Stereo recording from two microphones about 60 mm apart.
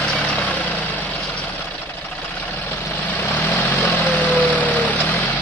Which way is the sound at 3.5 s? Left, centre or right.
Left.